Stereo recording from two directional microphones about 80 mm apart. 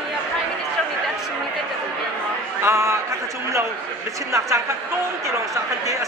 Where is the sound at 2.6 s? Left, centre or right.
Right.